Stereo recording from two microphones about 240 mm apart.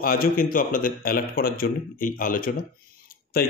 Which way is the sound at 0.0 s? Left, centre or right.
Left.